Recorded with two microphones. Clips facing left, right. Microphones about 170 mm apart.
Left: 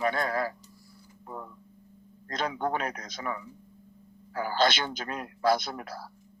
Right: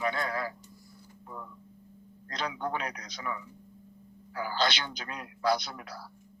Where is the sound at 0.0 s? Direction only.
50° left (ahead or behind).